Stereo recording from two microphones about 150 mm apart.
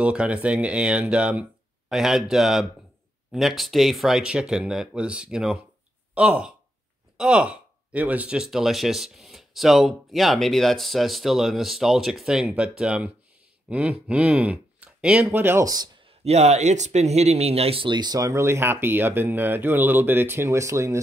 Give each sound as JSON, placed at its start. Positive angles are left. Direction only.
{"t": 0.0, "sound": "speech", "side_deg": -5}
{"t": 16.3, "sound": "speech", "side_deg": -45}